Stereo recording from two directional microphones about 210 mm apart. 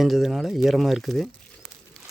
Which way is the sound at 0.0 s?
Centre (ahead or behind).